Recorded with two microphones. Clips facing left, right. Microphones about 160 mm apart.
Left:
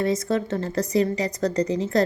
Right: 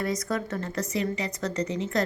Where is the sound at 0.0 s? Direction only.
25° left (ahead or behind).